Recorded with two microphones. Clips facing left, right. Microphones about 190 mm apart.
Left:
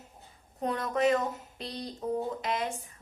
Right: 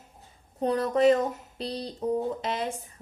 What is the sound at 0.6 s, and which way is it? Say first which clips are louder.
A woman's voice: right 5 dB; 35° right (ahead or behind).